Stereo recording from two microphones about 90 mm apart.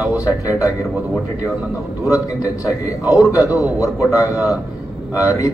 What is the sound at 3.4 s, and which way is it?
Speech, 20° right (ahead or behind).